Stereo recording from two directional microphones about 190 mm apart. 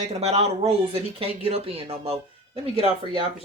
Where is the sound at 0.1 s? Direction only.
35° right (ahead or behind).